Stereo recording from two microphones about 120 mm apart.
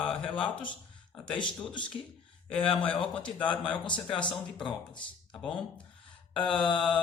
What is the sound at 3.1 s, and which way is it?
Speech, 10° left (ahead or behind).